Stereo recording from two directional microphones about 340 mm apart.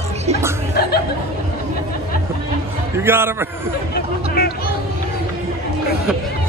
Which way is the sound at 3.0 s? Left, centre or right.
Centre.